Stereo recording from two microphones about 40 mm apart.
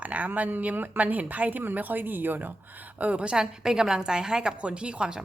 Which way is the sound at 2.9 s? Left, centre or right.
Right.